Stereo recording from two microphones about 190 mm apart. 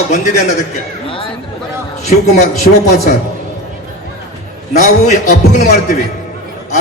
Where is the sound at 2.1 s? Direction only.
35° left (ahead or behind).